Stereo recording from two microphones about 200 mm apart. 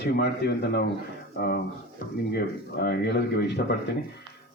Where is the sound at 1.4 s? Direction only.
50° left (ahead or behind).